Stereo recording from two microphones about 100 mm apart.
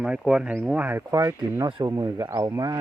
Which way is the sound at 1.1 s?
30° right (ahead or behind).